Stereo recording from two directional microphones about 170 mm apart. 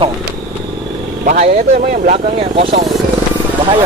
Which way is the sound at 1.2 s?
40° right (ahead or behind).